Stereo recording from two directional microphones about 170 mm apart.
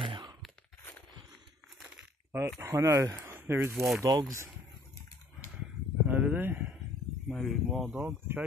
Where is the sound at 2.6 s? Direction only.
15° right (ahead or behind).